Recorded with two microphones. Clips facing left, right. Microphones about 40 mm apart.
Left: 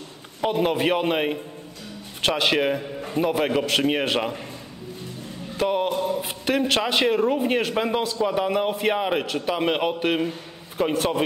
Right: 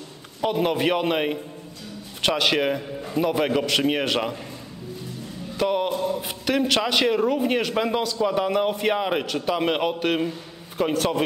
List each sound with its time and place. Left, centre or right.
0.4 s a man's voice: centre
5.6 s a man's voice: centre
5.9 s a sound: left
6.2 s a man's voice: centre